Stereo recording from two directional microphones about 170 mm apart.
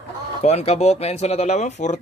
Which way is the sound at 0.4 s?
40° left (ahead or behind).